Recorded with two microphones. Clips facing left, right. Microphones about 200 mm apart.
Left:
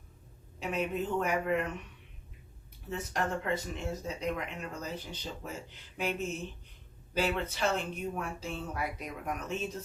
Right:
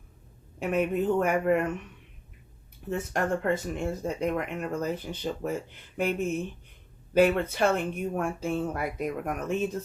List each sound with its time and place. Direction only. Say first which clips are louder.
0.6 s speech: right 7 dB; 55° right (ahead or behind)
2.9 s speech: right 6 dB; 50° right (ahead or behind)